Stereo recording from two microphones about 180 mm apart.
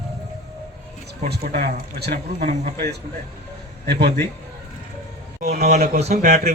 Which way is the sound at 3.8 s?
60° right (ahead or behind).